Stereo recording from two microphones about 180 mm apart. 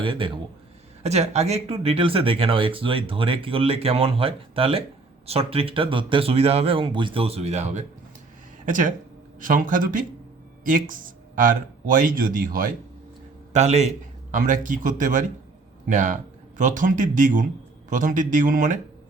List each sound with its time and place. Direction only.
0.0 s a man's voice: 30° right (ahead or behind); by 12.7 s 50° right (ahead or behind)
13.5 s a man's voice: 40° right (ahead or behind)